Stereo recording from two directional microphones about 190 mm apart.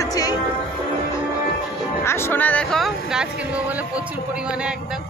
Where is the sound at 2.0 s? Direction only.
15° left (ahead or behind).